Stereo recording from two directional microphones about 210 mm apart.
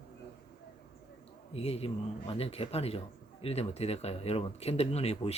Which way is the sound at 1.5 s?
30° left (ahead or behind).